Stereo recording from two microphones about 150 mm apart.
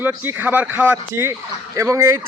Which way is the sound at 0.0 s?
10° right (ahead or behind).